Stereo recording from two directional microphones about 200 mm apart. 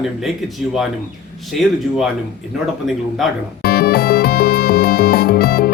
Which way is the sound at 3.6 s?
50° left (ahead or behind).